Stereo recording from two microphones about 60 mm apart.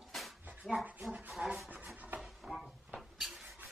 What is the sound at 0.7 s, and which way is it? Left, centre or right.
Pant, centre.